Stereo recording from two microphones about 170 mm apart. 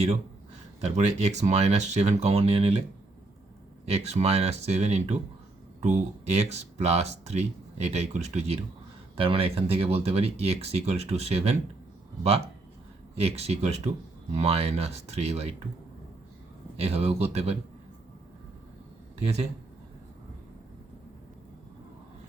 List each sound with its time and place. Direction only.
0.8 s speech: 40° right (ahead or behind)
3.8 s speech: 40° right (ahead or behind)
13.1 s speech: 40° right (ahead or behind)
16.7 s speech: 35° right (ahead or behind)